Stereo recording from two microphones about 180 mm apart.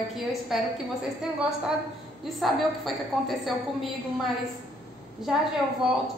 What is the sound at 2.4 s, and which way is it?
A woman's voice, centre (ahead or behind).